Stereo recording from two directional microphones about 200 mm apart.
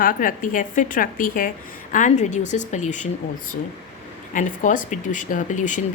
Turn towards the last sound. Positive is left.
turn(degrees=40)  # may be behind; listen again after turning